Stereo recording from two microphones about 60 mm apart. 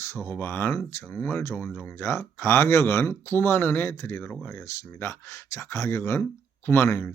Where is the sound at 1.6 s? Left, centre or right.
Left.